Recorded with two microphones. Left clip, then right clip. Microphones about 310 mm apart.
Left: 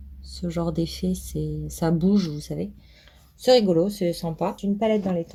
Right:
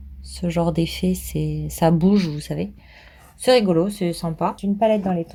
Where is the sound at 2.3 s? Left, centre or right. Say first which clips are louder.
Right 3 dB; right.